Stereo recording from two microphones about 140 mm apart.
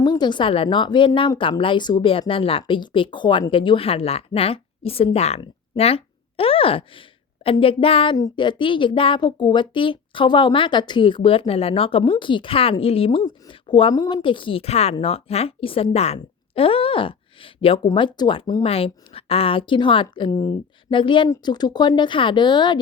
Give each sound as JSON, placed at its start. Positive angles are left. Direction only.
{"t": 0.0, "sound": "a woman's voice", "side_deg": 30}
{"t": 8.1, "sound": "a woman's voice", "side_deg": 30}
{"t": 18.6, "sound": "a woman's voice", "side_deg": 45}